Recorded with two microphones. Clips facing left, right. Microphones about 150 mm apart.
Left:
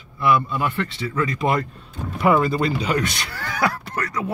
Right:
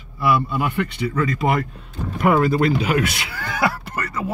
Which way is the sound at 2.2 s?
Centre (ahead or behind).